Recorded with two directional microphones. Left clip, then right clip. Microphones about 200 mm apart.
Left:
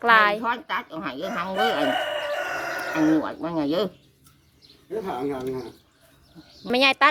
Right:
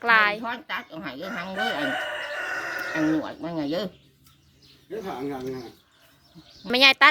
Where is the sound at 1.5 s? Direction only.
65° left (ahead or behind).